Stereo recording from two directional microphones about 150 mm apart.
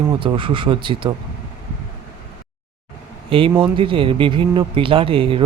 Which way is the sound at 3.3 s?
35° right (ahead or behind).